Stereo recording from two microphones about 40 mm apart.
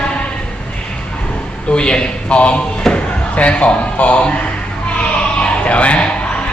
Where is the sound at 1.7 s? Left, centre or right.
Left.